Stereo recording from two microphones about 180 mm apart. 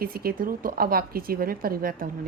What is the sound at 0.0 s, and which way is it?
A woman's voice, 55° right (ahead or behind).